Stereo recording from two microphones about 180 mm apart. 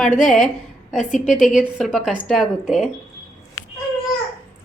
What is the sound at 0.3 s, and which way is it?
A woman's voice, centre (ahead or behind).